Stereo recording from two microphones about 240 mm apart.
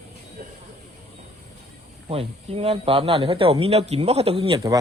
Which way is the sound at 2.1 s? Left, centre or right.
Right.